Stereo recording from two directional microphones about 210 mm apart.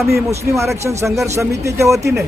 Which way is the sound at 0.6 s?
15° right (ahead or behind).